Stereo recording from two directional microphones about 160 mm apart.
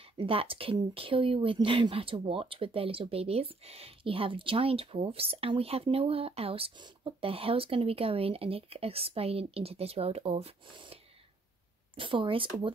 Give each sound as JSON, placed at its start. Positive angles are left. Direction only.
{"t": 0.2, "sound": "speech", "side_deg": -35}
{"t": 12.0, "sound": "speech", "side_deg": -30}